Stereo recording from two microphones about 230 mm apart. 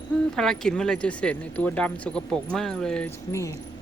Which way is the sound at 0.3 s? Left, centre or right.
Centre.